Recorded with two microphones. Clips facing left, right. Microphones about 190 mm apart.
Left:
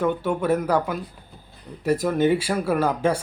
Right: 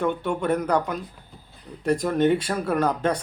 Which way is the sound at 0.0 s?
5° left (ahead or behind).